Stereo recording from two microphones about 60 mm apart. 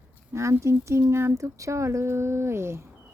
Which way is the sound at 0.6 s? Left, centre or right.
Right.